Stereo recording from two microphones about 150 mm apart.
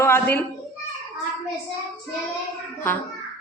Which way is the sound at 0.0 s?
15° left (ahead or behind).